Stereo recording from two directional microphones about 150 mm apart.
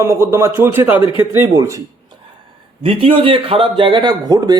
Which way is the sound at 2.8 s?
35° right (ahead or behind).